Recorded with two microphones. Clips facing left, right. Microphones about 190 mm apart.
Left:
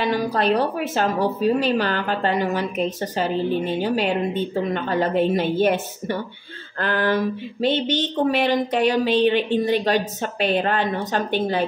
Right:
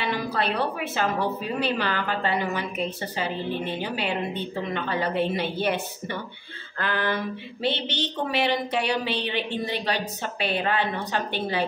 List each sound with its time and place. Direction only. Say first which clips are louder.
0.0 s speech: left 6 dB; 45° left (ahead or behind)